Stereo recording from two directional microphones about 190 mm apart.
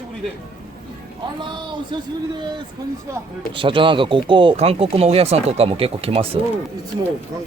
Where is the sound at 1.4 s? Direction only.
25° right (ahead or behind).